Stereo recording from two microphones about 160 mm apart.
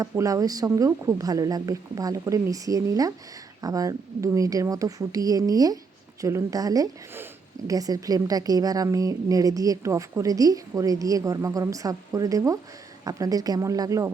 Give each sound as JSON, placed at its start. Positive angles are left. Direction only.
{"t": 0.0, "sound": "a woman's voice", "side_deg": -20}